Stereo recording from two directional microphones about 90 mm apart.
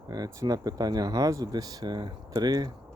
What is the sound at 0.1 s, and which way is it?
Speech, 45° right (ahead or behind).